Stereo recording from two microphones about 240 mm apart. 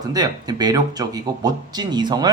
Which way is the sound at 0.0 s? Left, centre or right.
Centre.